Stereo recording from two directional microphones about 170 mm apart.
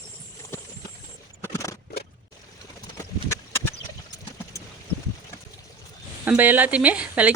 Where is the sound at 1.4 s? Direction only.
15° left (ahead or behind).